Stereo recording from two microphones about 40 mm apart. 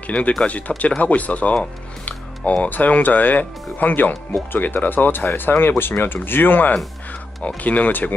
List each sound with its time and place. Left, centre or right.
0.0 s speech: left
7.1 s speech: left